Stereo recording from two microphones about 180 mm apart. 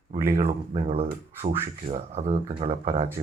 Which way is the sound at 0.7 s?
30° right (ahead or behind).